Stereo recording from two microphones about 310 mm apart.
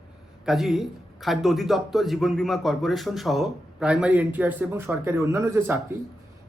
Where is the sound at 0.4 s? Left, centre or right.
Centre.